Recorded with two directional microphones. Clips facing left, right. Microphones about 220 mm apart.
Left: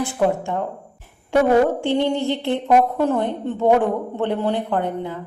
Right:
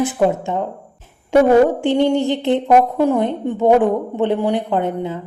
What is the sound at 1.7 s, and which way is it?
A woman's voice, 15° right (ahead or behind).